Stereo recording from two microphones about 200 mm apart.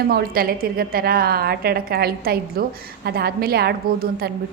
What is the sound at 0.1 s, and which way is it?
A woman's voice, 50° right (ahead or behind).